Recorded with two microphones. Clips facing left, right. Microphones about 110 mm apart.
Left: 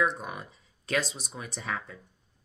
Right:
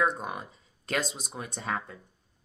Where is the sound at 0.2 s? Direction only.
40° right (ahead or behind).